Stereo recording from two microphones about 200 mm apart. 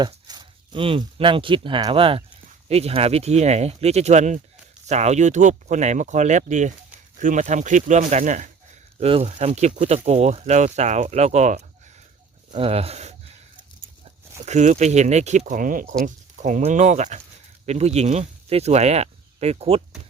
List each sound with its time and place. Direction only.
0.0 s speech: 20° right (ahead or behind)
14.4 s speech: 35° right (ahead or behind)